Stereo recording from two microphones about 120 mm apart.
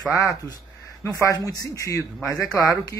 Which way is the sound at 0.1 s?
25° left (ahead or behind).